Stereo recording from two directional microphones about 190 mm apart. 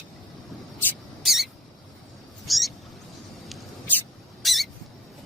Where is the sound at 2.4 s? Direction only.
Centre (ahead or behind).